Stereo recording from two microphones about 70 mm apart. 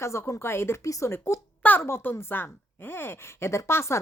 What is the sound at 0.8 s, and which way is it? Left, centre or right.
Speech, left.